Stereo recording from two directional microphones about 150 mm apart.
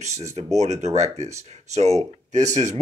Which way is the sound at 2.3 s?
50° right (ahead or behind).